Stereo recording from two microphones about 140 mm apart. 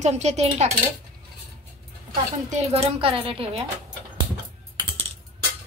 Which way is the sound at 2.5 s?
40° right (ahead or behind).